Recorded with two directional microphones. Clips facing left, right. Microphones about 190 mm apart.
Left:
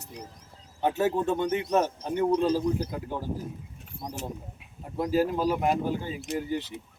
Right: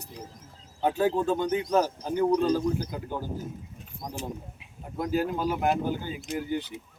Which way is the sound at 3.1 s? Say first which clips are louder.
Left 1 dB; centre (ahead or behind).